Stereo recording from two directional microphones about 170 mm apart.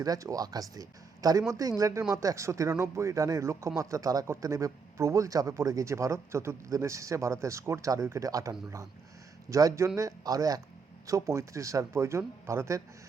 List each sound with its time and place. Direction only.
0.0 s speech: 20° right (ahead or behind)